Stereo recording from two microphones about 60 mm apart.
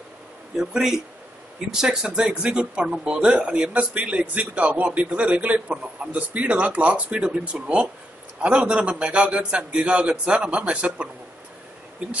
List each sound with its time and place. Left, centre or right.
0.6 s a man's voice: centre